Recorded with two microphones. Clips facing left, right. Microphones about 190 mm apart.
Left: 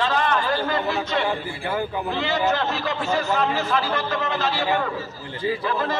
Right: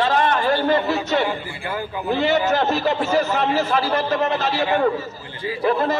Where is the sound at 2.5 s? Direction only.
40° right (ahead or behind).